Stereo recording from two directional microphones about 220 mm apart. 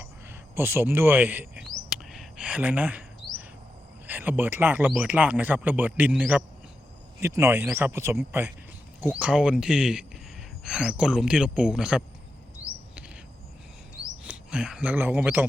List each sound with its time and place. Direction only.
0.0 s a sound: 10° right (ahead or behind)
4.0 s speech: 10° right (ahead or behind)
13.9 s bird: 5° right (ahead or behind)